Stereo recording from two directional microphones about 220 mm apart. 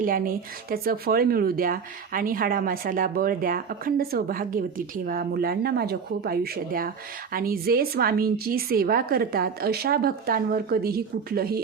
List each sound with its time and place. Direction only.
0.0 s a woman's voice: 40° right (ahead or behind)